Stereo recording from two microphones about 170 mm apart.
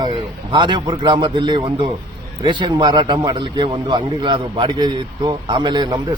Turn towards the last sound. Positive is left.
turn(degrees=-25)  # may be behind; listen again after turning